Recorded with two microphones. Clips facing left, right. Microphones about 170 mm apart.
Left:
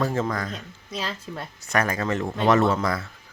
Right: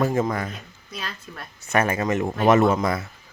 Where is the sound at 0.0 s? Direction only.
15° right (ahead or behind).